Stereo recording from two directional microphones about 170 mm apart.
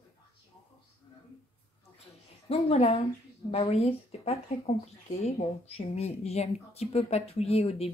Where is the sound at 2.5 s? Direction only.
40° left (ahead or behind).